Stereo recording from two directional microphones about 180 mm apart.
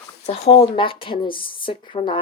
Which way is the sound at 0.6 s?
30° left (ahead or behind).